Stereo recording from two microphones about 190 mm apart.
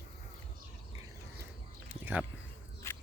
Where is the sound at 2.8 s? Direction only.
15° left (ahead or behind).